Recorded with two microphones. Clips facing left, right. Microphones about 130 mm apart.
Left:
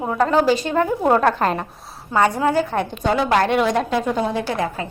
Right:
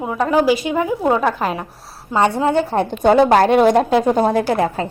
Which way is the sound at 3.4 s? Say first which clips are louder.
Right 6 dB; 35° right (ahead or behind).